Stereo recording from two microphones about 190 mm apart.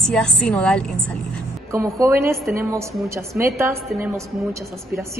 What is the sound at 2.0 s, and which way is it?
A woman's voice, 15° right (ahead or behind).